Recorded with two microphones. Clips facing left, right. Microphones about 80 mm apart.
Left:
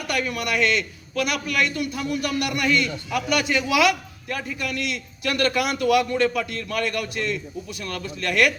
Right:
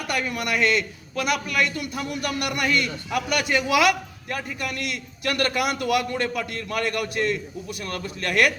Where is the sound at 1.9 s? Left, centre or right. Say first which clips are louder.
Left 2 dB; right.